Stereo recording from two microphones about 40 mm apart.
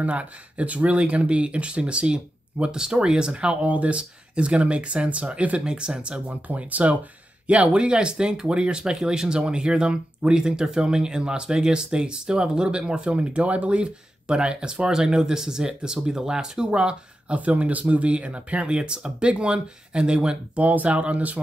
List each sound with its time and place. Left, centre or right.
0.0 s speech: right
3.6 s speech: right
5.7 s speech: right
6.2 s speech: right
17.4 s speech: right
20.5 s speech: right